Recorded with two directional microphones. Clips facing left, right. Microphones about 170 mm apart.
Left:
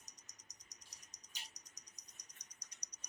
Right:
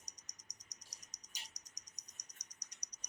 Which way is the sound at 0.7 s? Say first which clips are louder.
Right 2 dB; 40° right (ahead or behind).